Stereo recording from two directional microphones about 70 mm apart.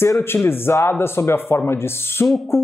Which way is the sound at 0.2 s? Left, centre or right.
Left.